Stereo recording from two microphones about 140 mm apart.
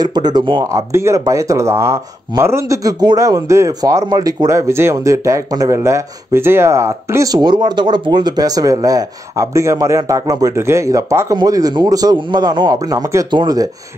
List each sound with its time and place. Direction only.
0.0 s speech: 30° right (ahead or behind)